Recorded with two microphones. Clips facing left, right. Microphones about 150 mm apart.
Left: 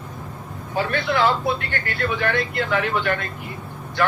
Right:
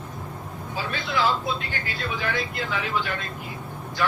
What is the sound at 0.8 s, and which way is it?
Speech, 60° left (ahead or behind).